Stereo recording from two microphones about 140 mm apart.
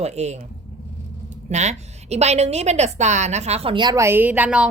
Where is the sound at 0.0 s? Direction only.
50° right (ahead or behind).